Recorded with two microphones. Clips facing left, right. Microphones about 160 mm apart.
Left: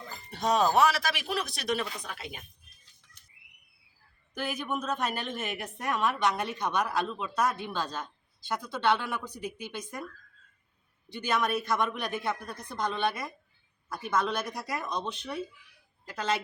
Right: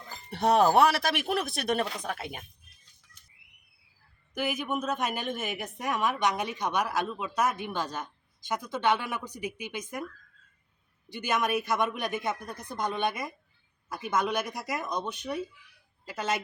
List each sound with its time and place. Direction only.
0.3 s a man's voice: 65° right (ahead or behind)
4.4 s a woman's voice: 10° right (ahead or behind)
11.1 s a woman's voice: 15° right (ahead or behind)